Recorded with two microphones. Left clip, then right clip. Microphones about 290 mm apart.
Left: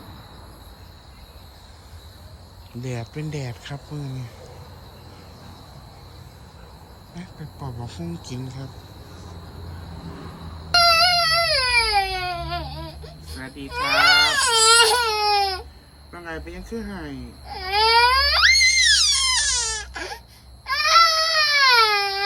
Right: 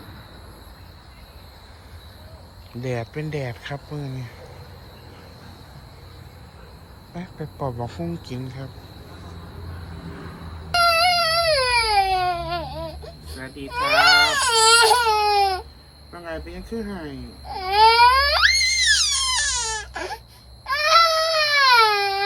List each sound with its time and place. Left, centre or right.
2.8 s speech: centre
7.2 s speech: centre
10.1 s a sound: left
10.7 s baby cry: centre